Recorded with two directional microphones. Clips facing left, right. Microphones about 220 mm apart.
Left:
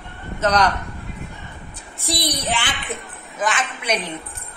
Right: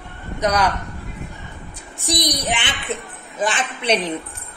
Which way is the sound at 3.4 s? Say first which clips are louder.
Right 1 dB; 30° right (ahead or behind).